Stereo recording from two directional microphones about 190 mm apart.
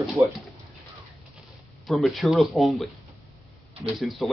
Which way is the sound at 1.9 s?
Centre (ahead or behind).